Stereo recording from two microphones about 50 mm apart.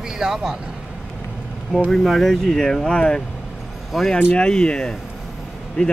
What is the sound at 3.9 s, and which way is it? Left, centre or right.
Speech, centre.